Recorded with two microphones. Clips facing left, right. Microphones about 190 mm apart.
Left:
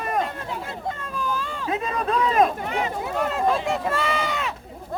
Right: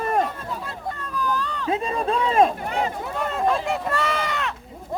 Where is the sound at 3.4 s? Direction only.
Centre (ahead or behind).